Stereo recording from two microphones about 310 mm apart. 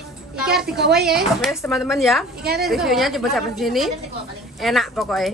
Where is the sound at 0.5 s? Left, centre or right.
Centre.